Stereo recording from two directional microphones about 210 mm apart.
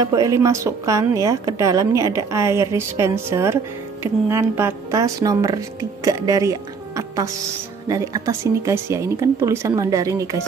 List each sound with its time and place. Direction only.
0.0 s a woman's voice: 15° right (ahead or behind)